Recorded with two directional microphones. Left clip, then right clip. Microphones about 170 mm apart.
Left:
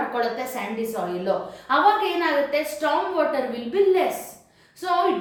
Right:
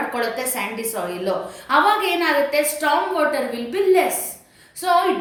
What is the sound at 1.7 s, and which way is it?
A woman's voice, 10° right (ahead or behind).